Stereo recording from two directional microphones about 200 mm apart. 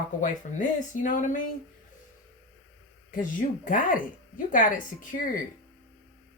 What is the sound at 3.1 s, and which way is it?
A woman's voice, 40° left (ahead or behind).